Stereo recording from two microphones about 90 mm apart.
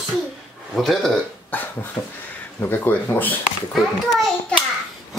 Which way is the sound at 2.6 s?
25° left (ahead or behind).